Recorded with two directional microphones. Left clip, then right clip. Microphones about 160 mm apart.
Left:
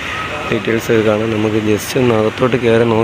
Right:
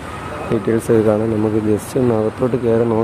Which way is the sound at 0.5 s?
25° right (ahead or behind).